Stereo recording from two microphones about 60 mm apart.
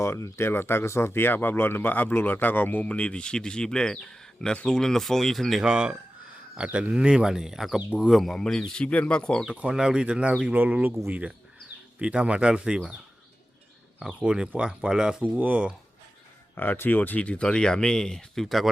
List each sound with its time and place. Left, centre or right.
0.0 s speech: left; by 5.5 s centre
5.5 s speech: centre
8.3 s speech: centre
9.5 s speech: right
14.2 s speech: centre
15.3 s speech: right
16.6 s speech: left; by 18.4 s centre
18.4 s speech: centre